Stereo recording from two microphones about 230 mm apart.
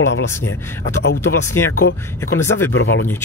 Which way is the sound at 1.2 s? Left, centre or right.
Centre.